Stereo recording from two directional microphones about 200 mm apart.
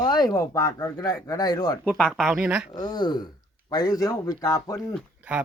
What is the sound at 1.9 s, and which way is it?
Speech, centre (ahead or behind).